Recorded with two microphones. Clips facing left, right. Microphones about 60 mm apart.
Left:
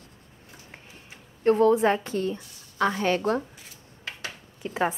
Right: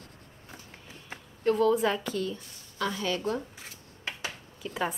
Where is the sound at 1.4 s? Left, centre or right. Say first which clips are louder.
Left 5 dB; left.